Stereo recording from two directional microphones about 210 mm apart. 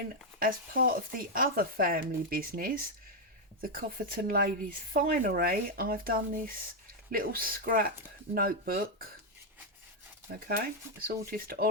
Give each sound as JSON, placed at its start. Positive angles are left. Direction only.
{"t": 0.3, "sound": "speech", "side_deg": -45}
{"t": 10.4, "sound": "speech", "side_deg": -45}